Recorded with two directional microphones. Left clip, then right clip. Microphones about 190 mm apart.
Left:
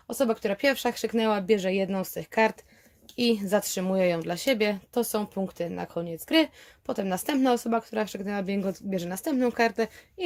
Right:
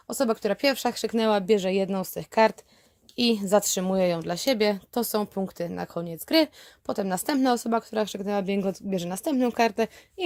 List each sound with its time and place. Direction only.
0.1 s a woman's voice: 35° right (ahead or behind)